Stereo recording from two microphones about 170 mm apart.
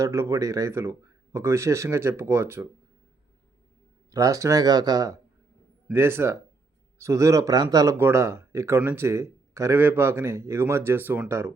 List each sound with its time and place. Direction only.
0.0 s speech: 20° right (ahead or behind)
4.1 s speech: 20° right (ahead or behind)